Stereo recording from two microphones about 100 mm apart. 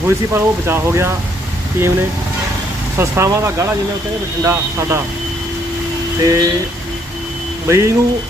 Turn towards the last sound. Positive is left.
turn(degrees=-30)  # may be behind; listen again after turning